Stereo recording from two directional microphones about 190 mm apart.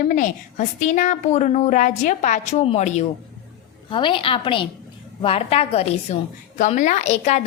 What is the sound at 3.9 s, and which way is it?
A woman's voice, 25° left (ahead or behind).